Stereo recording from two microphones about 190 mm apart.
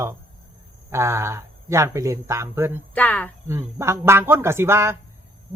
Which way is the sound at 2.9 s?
10° left (ahead or behind).